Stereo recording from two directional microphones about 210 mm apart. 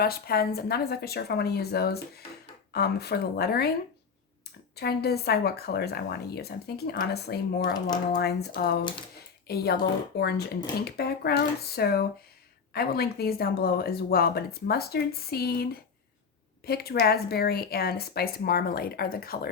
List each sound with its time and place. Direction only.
0.0 s speech: 45° left (ahead or behind)
4.7 s speech: 50° left (ahead or behind)
8.8 s speech: 20° left (ahead or behind)
9.5 s speech: 50° left (ahead or behind)